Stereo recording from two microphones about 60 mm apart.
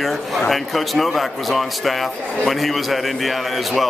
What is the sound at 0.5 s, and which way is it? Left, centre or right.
Speech, centre.